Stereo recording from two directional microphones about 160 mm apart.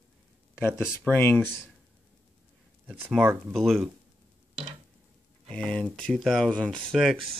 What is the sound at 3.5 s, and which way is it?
Speech, centre (ahead or behind).